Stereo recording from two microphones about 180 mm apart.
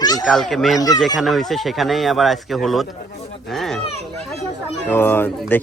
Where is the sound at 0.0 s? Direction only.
20° left (ahead or behind).